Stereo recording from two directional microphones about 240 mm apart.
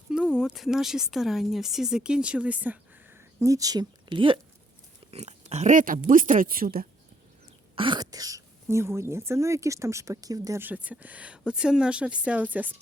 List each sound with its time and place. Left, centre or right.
0.1 s speech: centre; by 6.8 s right
7.8 s speech: centre